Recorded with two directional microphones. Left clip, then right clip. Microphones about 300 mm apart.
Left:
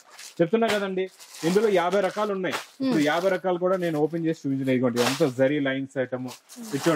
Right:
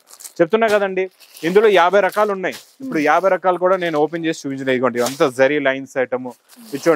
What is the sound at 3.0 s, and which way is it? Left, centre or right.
Speech, centre.